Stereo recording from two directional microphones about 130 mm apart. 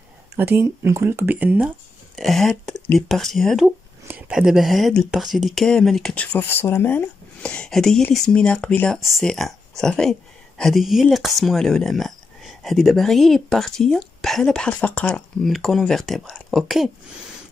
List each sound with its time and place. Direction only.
0.4 s speech: 20° right (ahead or behind)
2.1 s speech: centre (ahead or behind)